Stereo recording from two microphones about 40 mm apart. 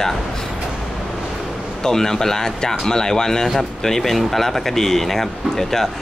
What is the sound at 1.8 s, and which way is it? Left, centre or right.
Speech, centre.